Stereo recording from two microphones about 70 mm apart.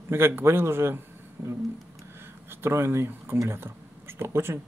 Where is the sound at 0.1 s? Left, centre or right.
Right.